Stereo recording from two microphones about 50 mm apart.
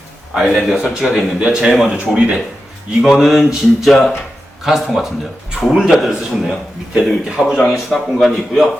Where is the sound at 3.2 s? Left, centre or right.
Centre.